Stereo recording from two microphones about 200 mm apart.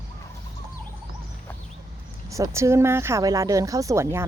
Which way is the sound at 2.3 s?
15° right (ahead or behind).